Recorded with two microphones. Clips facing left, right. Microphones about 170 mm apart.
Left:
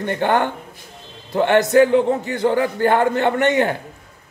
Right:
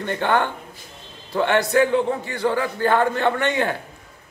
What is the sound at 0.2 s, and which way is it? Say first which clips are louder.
Speech: left 2 dB; 45° left (ahead or behind).